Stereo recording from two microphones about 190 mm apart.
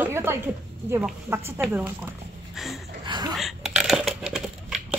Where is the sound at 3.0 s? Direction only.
20° right (ahead or behind).